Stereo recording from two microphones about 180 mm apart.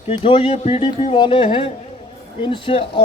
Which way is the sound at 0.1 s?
30° left (ahead or behind).